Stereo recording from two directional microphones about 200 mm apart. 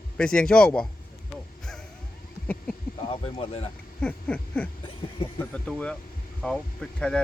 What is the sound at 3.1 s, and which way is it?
Speech, 30° left (ahead or behind).